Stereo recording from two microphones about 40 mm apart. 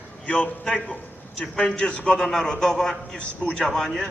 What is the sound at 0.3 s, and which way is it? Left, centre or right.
Speech, left.